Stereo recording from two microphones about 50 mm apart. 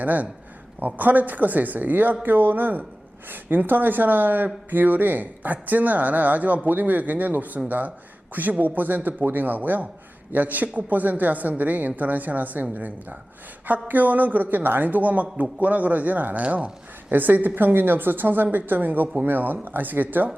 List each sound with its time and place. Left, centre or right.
0.0 s speech: right